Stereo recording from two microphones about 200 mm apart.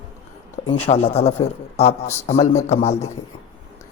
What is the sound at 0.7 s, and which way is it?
Speech, 30° left (ahead or behind).